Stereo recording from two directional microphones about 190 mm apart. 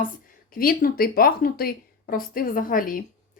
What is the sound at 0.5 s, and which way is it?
A woman's voice, 50° left (ahead or behind).